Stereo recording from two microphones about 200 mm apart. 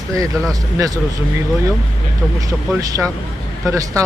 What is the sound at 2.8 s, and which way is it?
Speech, 15° right (ahead or behind).